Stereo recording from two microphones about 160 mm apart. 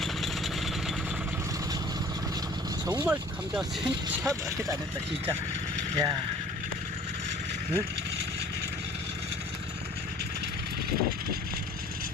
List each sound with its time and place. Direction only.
0.0 s vehicle: centre (ahead or behind)
2.8 s speech: 15° right (ahead or behind)
3.5 s speech: 5° right (ahead or behind)
6.0 s speech: 25° right (ahead or behind)